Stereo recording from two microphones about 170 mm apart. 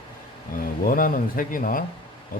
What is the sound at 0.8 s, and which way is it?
A man's voice, 55° left (ahead or behind).